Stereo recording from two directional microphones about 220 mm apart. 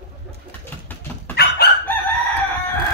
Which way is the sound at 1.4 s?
45° left (ahead or behind).